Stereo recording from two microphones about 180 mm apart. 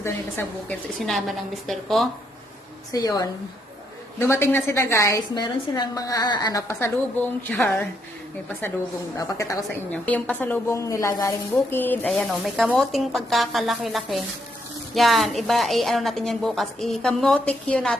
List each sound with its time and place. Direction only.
0.0 s a woman's voice: 10° left (ahead or behind)
2.9 s a woman's voice: 20° left (ahead or behind)
9.1 s a woman's voice: 20° left (ahead or behind)
9.9 s a woman's voice: 10° left (ahead or behind)